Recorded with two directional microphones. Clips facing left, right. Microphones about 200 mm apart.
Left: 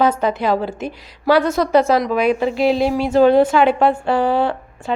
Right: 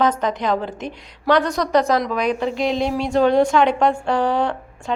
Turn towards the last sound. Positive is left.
turn(degrees=5)  # may be behind; listen again after turning